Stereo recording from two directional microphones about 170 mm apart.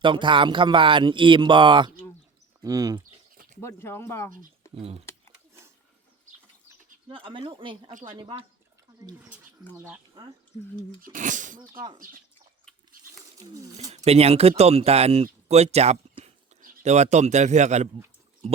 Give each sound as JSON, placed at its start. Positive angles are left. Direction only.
{"t": 0.0, "sound": "speech", "side_deg": -30}
{"t": 3.6, "sound": "speech", "side_deg": 15}
{"t": 4.7, "sound": "speech", "side_deg": -35}
{"t": 7.1, "sound": "speech", "side_deg": -30}
{"t": 9.7, "sound": "speech", "side_deg": -10}
{"t": 11.0, "sound": "speech", "side_deg": -50}
{"t": 13.4, "sound": "speech", "side_deg": -40}